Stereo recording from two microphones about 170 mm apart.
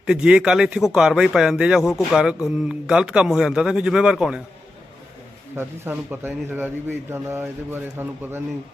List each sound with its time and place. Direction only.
0.0 s speech: 5° right (ahead or behind)
5.5 s speech: 10° right (ahead or behind)